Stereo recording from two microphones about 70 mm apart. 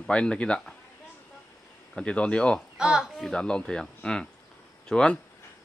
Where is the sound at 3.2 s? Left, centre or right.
Centre.